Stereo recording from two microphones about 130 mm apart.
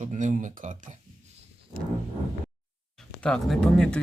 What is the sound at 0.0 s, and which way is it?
Speech, 70° right (ahead or behind).